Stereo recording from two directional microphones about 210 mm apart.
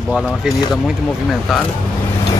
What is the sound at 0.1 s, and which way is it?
Speech, centre (ahead or behind).